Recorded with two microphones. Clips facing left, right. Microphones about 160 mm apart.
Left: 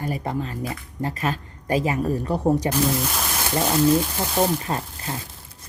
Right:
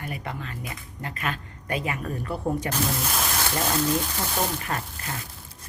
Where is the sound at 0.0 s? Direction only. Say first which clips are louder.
Left 8 dB; 35° left (ahead or behind).